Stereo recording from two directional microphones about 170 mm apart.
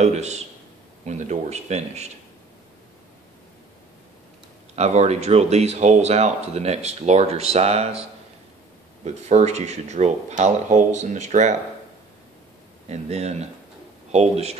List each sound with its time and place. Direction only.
0.0 s speech: 40° right (ahead or behind)
4.7 s speech: 40° right (ahead or behind)
12.8 s speech: 40° right (ahead or behind)